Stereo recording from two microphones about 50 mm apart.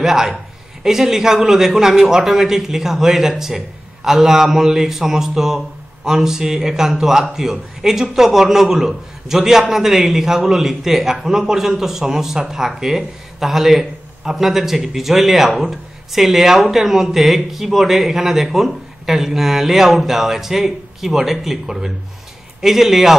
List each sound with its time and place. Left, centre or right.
0.0 s a man's voice: centre